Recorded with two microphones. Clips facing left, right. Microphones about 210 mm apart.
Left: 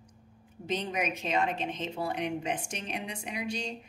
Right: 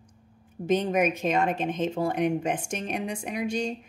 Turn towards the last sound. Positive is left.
turn(degrees=-50)  # may be behind; listen again after turning